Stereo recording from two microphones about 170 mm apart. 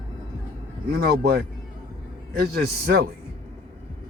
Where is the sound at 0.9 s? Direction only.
70° right (ahead or behind).